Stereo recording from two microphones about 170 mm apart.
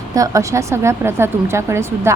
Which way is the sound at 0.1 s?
20° right (ahead or behind).